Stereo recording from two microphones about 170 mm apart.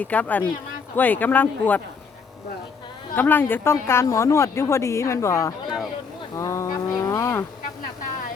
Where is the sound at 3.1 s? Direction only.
10° left (ahead or behind).